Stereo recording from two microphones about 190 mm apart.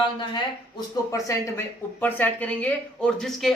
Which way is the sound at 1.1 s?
15° left (ahead or behind).